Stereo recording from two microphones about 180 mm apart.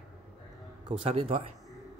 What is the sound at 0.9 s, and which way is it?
Speech, 30° right (ahead or behind).